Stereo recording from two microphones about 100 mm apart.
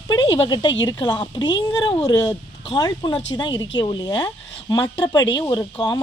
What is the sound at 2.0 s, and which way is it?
A woman's voice, 40° left (ahead or behind).